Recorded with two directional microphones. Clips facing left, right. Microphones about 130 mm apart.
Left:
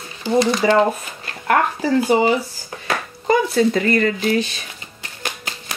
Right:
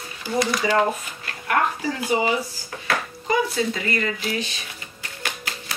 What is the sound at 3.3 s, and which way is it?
Speech, 45° left (ahead or behind).